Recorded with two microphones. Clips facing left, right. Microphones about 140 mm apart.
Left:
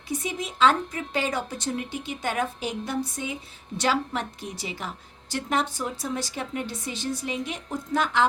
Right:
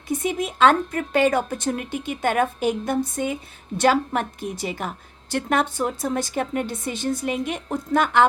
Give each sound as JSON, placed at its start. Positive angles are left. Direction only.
{"t": 0.1, "sound": "a woman's voice", "side_deg": -55}